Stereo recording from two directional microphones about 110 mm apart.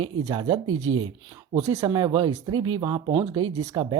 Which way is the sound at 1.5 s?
30° right (ahead or behind).